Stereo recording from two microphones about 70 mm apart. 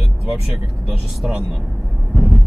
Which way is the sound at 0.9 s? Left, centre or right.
Centre.